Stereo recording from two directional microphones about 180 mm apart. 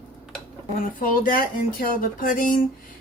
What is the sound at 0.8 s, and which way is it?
Speech, 50° left (ahead or behind).